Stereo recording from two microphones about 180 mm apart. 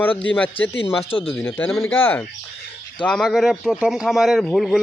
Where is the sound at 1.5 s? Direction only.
5° left (ahead or behind).